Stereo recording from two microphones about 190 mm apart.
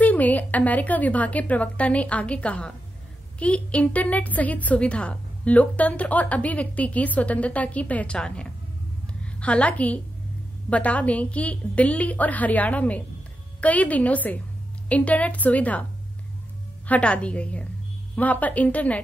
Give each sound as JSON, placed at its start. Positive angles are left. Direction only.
{"t": 0.0, "sound": "a woman's voice", "side_deg": 10}
{"t": 16.8, "sound": "a woman's voice", "side_deg": 5}